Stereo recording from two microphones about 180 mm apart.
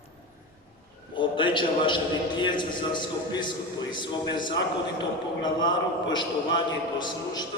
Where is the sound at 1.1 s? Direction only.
25° left (ahead or behind).